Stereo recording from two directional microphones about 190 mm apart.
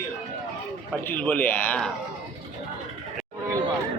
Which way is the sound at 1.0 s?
10° left (ahead or behind).